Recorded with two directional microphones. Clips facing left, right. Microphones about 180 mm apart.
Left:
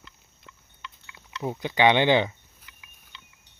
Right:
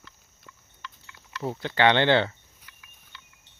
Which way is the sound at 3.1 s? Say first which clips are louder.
Even; 20° left (ahead or behind).